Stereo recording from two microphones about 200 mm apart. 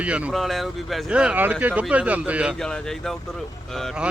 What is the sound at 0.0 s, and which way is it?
Speech, 5° right (ahead or behind).